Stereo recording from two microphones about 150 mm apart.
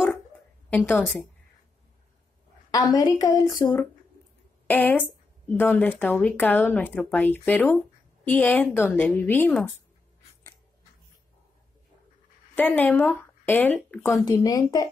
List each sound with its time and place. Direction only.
0.7 s a woman's voice: 10° left (ahead or behind)
2.7 s speech: 25° left (ahead or behind)
4.6 s speech: 10° left (ahead or behind)
12.5 s speech: 10° left (ahead or behind)
14.1 s speech: 25° left (ahead or behind)